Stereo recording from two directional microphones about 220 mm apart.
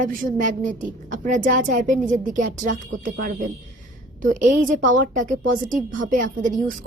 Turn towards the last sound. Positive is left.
turn(degrees=-35)  # may be behind; listen again after turning